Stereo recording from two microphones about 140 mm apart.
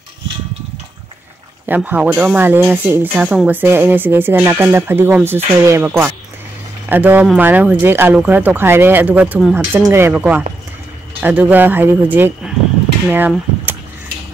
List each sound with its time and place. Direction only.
1.7 s speech: 10° right (ahead or behind)
9.8 s speech: 20° right (ahead or behind)